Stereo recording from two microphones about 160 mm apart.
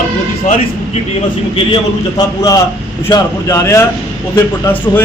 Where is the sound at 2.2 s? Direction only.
20° left (ahead or behind).